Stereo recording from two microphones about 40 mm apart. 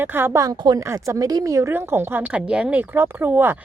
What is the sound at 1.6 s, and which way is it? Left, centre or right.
Speech, right.